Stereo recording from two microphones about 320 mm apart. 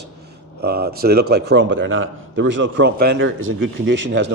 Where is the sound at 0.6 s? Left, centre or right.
Right.